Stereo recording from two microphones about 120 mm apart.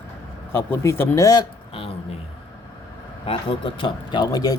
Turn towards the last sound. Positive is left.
turn(degrees=35)  # may be behind; listen again after turning